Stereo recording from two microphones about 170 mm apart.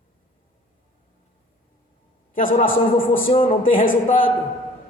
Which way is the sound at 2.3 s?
50° left (ahead or behind).